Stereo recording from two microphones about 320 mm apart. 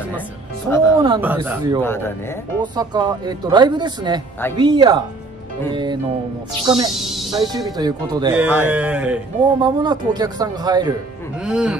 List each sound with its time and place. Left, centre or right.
1.0 s speech: centre
1.8 s speech: centre
2.6 s speech: centre
6.9 s speech: centre
7.7 s speech: centre